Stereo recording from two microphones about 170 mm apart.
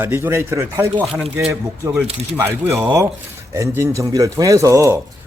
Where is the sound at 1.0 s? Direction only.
Centre (ahead or behind).